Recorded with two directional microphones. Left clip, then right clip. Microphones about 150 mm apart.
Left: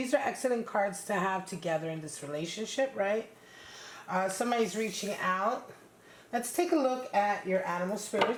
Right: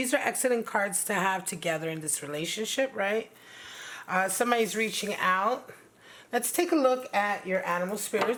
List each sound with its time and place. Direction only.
0.0 s speech: 35° right (ahead or behind)